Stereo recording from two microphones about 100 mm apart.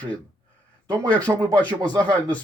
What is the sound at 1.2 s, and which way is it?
Speech, 40° right (ahead or behind).